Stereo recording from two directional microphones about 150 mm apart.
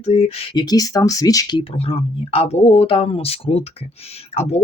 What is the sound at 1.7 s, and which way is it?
Speech, 40° left (ahead or behind).